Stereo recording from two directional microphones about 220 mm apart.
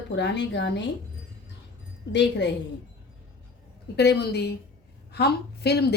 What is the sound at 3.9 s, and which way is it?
A woman's voice, 50° left (ahead or behind).